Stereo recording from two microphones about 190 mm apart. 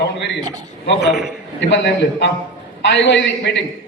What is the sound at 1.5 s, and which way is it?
A man's voice, 70° left (ahead or behind).